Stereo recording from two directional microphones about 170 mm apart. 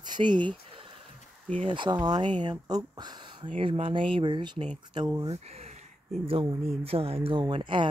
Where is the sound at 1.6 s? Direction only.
30° right (ahead or behind).